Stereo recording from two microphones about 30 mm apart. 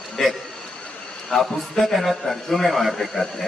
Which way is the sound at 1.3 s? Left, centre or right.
Left.